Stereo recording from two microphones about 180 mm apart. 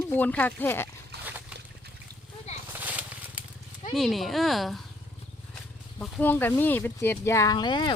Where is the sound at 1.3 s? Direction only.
10° right (ahead or behind).